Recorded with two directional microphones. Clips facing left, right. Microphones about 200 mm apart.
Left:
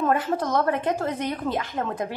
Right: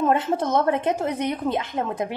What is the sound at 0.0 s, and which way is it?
A woman's voice, 25° right (ahead or behind).